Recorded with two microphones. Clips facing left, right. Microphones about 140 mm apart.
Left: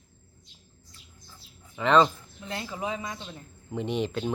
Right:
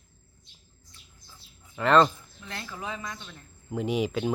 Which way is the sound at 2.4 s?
20° left (ahead or behind).